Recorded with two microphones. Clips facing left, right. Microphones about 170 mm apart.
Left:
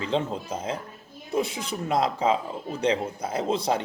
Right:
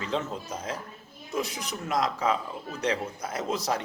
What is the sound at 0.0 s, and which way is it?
Speech, 30° left (ahead or behind).